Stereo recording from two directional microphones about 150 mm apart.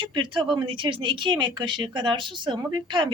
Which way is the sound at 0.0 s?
35° right (ahead or behind).